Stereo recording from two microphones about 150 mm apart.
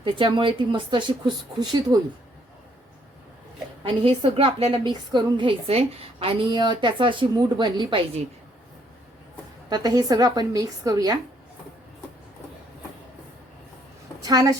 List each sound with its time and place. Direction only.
0.0 s a woman's voice: 35° right (ahead or behind)
3.8 s a woman's voice: 35° right (ahead or behind)
9.6 s speech: 25° right (ahead or behind)
14.2 s a woman's voice: 25° right (ahead or behind)